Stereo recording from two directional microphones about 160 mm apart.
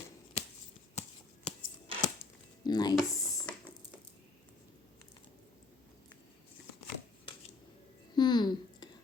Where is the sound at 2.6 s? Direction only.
25° left (ahead or behind).